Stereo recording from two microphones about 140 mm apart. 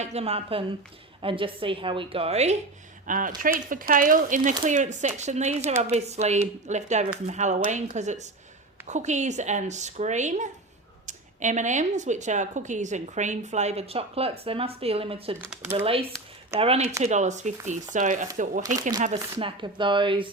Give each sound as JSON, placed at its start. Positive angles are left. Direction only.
{"t": 0.0, "sound": "a woman's voice", "side_deg": -50}
{"t": 3.1, "sound": "a woman's voice", "side_deg": -75}
{"t": 17.0, "sound": "speech", "side_deg": -55}
{"t": 19.4, "sound": "a woman's voice", "side_deg": -40}